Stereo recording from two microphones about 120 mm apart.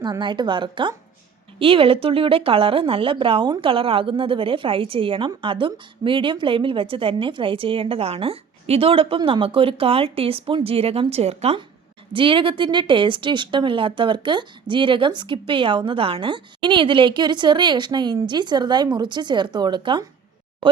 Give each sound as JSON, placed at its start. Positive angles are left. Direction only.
{"t": 0.0, "sound": "a woman's voice", "side_deg": -40}
{"t": 12.1, "sound": "a woman's voice", "side_deg": -45}